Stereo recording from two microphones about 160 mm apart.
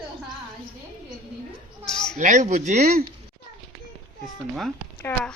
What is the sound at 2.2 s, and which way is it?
Speech, 50° right (ahead or behind).